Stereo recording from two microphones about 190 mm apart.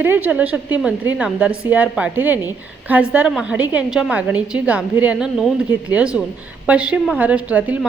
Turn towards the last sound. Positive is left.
turn(degrees=-10)  # may be behind; listen again after turning